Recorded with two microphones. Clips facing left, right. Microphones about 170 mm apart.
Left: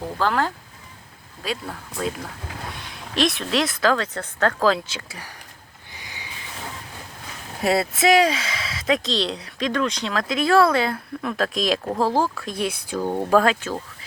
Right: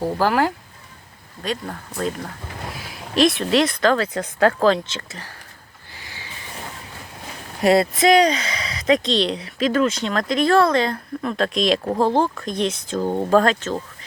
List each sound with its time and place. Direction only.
0.2 s speech: 10° right (ahead or behind)
1.5 s speech: 5° left (ahead or behind)
4.6 s speech: 5° left (ahead or behind)
6.0 s a sound: 15° left (ahead or behind)
7.6 s speech: centre (ahead or behind)